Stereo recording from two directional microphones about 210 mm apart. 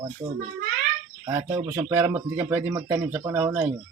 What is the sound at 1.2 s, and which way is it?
Speech, 10° right (ahead or behind).